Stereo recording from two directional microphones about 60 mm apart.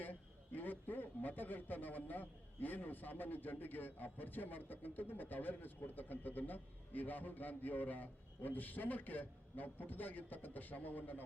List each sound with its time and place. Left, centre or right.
0.0 s a man's voice: left